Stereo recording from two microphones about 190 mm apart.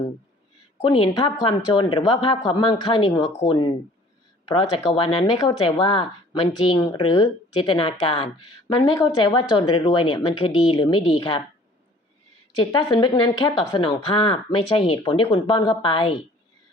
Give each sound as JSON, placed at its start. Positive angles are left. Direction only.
{"t": 0.8, "sound": "speech", "side_deg": 30}
{"t": 12.5, "sound": "speech", "side_deg": 20}